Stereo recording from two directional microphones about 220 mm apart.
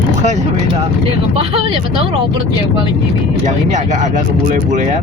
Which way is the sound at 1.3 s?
25° right (ahead or behind).